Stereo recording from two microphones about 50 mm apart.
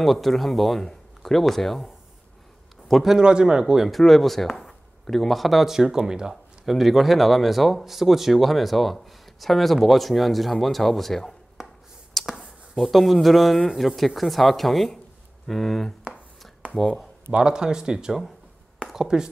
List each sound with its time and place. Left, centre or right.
0.0 s speech: centre
2.9 s a man's voice: centre
3.2 s speech: centre
3.9 s speech: centre
6.6 s speech: centre
11.6 s finger snapping: centre
12.2 s a sound: centre
12.7 s speech: centre
17.3 s speech: centre